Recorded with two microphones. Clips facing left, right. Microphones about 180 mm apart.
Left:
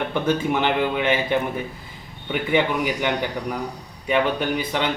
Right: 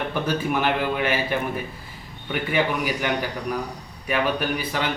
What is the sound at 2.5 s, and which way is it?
A man's voice, 20° left (ahead or behind).